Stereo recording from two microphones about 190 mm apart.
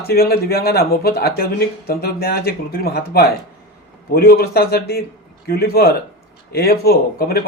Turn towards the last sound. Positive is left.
turn(degrees=55)  # may be behind; listen again after turning